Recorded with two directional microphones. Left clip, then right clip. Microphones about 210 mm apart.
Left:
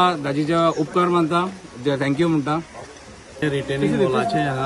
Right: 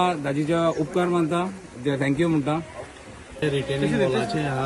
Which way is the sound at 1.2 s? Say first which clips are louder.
Left 4 dB; 5° left (ahead or behind).